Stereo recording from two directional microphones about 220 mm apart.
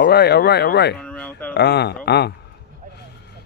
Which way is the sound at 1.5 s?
50° left (ahead or behind).